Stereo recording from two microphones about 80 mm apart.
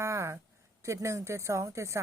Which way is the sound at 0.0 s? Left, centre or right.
Right.